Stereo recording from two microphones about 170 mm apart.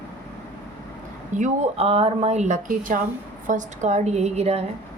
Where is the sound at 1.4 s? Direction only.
40° right (ahead or behind).